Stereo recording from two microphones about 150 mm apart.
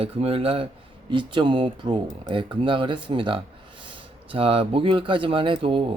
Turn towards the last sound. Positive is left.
turn(degrees=-35)  # may be behind; listen again after turning